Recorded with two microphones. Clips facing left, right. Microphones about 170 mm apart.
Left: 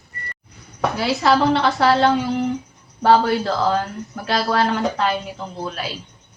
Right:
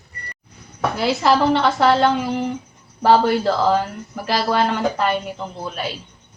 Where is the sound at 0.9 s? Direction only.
Centre (ahead or behind).